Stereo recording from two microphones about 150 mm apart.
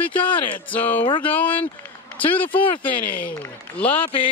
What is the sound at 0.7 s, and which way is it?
Speech, 10° left (ahead or behind).